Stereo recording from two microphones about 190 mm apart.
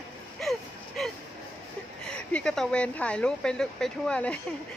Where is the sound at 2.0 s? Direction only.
5° left (ahead or behind).